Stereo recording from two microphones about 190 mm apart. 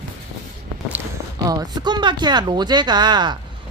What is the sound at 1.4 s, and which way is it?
Speech, 20° right (ahead or behind).